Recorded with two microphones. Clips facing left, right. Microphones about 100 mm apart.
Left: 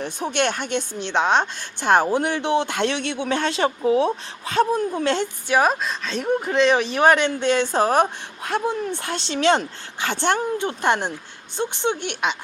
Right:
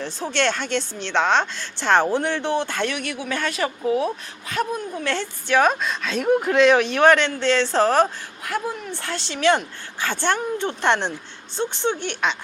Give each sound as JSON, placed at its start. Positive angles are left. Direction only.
{"t": 0.0, "sound": "speech", "side_deg": 15}
{"t": 5.1, "sound": "speech", "side_deg": 20}
{"t": 5.5, "sound": "speech", "side_deg": 0}
{"t": 8.4, "sound": "speech", "side_deg": 25}